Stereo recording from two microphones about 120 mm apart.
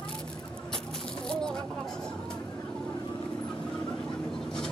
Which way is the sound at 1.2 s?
5° left (ahead or behind).